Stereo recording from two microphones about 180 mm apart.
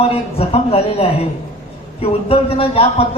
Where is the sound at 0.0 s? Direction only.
35° left (ahead or behind).